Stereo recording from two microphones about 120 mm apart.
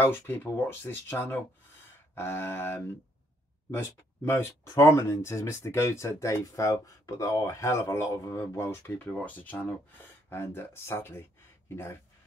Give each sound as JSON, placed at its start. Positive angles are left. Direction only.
{"t": 0.0, "sound": "speech", "side_deg": 20}